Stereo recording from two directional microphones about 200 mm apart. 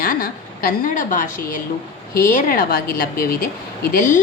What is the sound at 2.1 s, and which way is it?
A woman's voice, 45° left (ahead or behind).